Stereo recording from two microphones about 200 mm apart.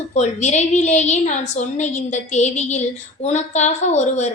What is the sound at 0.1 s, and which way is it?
A woman's voice, 35° left (ahead or behind).